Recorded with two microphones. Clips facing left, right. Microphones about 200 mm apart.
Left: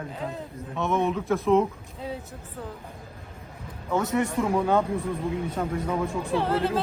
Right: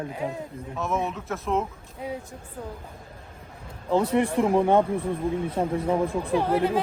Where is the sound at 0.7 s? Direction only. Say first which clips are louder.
Left 3 dB; centre (ahead or behind).